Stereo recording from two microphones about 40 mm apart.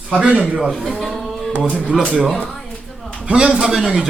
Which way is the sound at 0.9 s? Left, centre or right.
Centre.